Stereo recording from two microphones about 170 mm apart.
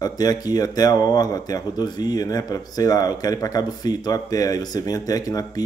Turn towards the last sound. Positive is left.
turn(degrees=20)  # may be behind; listen again after turning